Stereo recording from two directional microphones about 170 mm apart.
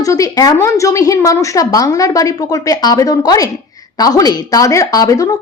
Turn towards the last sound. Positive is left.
turn(degrees=20)  # may be behind; listen again after turning